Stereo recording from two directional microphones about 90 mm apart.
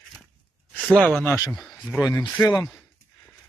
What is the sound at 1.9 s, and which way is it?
Speech, 40° left (ahead or behind).